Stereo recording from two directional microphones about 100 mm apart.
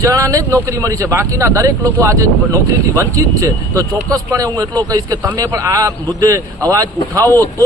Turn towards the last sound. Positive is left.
turn(degrees=-35)  # may be behind; listen again after turning